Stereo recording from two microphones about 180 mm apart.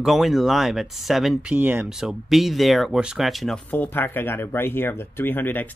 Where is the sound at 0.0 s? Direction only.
Centre (ahead or behind).